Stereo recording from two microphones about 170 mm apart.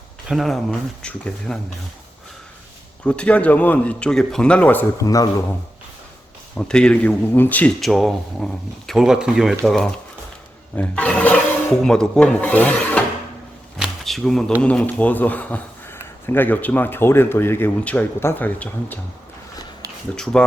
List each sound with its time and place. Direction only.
0.3 s speech: centre (ahead or behind)
3.0 s speech: 5° left (ahead or behind)
5.0 s a man's voice: 20° left (ahead or behind)
6.6 s speech: 5° left (ahead or behind)
13.7 s a sound: centre (ahead or behind)
14.6 s speech: 5° left (ahead or behind)
20.1 s speech: 5° left (ahead or behind)